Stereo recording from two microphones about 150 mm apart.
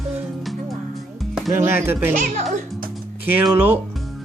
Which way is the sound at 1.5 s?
15° right (ahead or behind).